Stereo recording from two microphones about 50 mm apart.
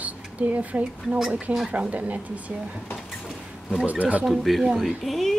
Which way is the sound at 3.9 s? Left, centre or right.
Right.